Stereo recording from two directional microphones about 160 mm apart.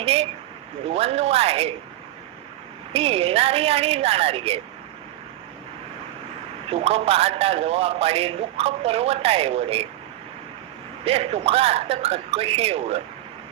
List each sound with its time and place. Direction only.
0.0 s a man's voice: 40° right (ahead or behind)
2.9 s a man's voice: 40° right (ahead or behind)
6.7 s a man's voice: 40° right (ahead or behind)
11.0 s a man's voice: 40° right (ahead or behind)